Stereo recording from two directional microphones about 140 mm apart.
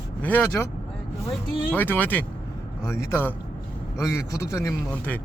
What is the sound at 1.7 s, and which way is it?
A man's voice, 15° left (ahead or behind).